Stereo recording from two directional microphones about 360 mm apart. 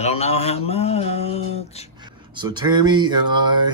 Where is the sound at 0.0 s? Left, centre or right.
Centre.